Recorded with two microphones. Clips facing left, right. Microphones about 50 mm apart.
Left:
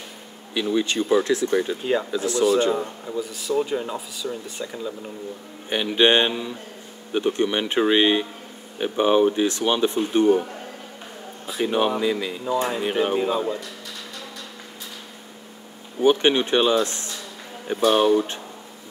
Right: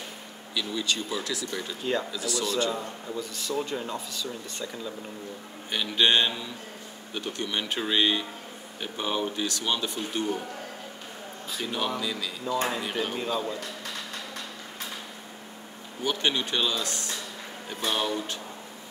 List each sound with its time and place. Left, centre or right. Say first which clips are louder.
0.6 s speech: left 8 dB; left
2.6 s speech: left 7 dB; centre
3.2 s speech: left 8 dB; centre
5.7 s speech: left 6 dB; left
11.4 s speech: left 9 dB; left
16.0 s speech: left 10 dB; left